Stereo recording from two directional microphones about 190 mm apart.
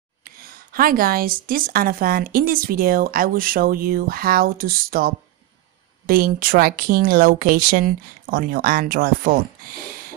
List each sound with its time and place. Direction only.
0.2 s speech: 50° right (ahead or behind)